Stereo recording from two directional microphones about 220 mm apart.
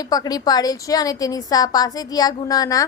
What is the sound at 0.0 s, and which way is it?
A woman's voice, 15° left (ahead or behind).